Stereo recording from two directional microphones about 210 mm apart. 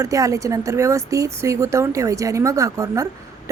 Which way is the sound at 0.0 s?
15° right (ahead or behind).